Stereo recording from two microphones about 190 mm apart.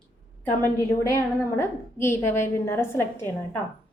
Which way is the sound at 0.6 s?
15° left (ahead or behind).